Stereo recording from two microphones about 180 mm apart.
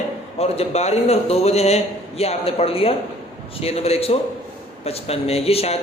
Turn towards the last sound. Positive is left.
turn(degrees=35)  # may be behind; listen again after turning